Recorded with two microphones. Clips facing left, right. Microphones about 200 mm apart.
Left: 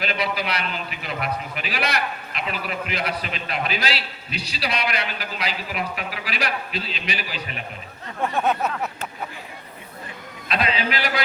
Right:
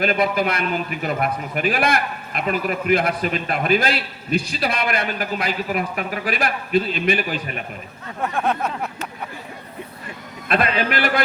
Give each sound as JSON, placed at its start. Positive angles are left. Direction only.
{"t": 0.0, "sound": "a man's voice", "side_deg": -50}
{"t": 8.4, "sound": "a sound", "side_deg": 0}
{"t": 10.5, "sound": "a man's voice", "side_deg": -55}